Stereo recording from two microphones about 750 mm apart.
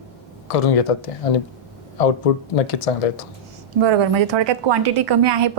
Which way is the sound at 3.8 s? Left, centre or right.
Right.